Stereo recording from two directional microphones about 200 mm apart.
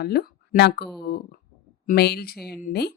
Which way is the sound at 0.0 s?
50° left (ahead or behind).